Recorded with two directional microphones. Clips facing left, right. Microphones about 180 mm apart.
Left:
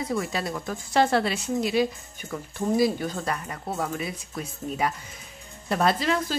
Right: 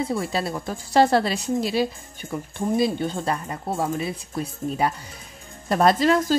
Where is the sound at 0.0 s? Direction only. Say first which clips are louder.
Right 3 dB; 30° right (ahead or behind).